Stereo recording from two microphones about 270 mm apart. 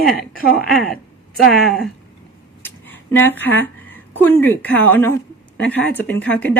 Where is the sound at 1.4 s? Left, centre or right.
Left.